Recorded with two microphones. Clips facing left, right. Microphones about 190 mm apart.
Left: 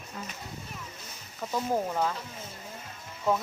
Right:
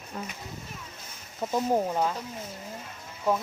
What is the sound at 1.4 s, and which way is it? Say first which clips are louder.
Speech: right 3 dB; 20° right (ahead or behind).